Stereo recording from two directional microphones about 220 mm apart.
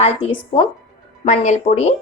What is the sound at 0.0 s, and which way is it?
A woman's voice, 25° left (ahead or behind).